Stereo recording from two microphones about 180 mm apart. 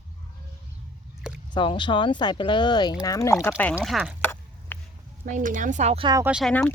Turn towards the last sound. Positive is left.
turn(degrees=5)  # may be behind; listen again after turning